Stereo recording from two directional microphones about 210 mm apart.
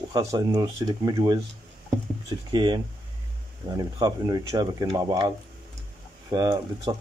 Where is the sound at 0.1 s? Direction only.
15° right (ahead or behind).